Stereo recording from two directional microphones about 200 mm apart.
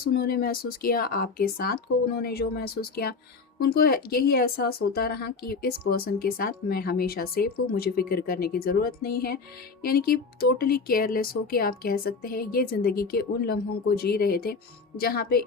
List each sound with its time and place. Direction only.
0.0 s speech: 50° left (ahead or behind)